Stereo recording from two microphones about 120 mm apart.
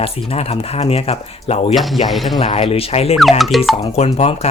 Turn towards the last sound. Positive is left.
turn(degrees=60)  # may be behind; listen again after turning